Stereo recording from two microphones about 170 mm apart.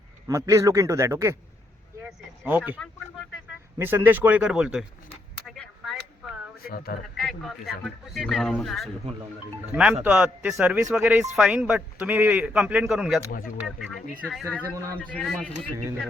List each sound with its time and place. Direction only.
0.3 s a man's voice: 20° right (ahead or behind)
2.7 s a man's voice: 5° left (ahead or behind)
3.8 s a man's voice: 10° right (ahead or behind)
5.5 s a sound: centre (ahead or behind)
6.6 s speech: 60° left (ahead or behind)
7.2 s a man's voice: 5° left (ahead or behind)
9.9 s a man's voice: 10° right (ahead or behind)